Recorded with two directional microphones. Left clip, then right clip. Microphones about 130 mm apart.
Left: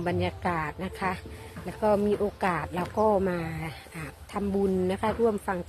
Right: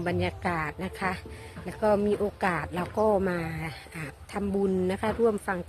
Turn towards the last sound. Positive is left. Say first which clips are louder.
# even
turn(degrees=-25)  # may be behind; listen again after turning